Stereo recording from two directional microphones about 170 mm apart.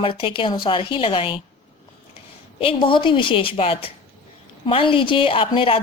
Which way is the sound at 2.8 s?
30° left (ahead or behind).